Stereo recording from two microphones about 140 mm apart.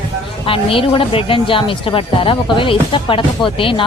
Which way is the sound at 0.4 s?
40° left (ahead or behind).